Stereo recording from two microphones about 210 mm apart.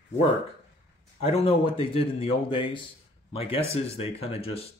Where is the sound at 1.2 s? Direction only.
30° left (ahead or behind).